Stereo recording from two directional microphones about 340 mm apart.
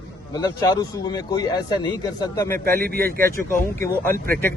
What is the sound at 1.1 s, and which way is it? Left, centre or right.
A man's voice, centre.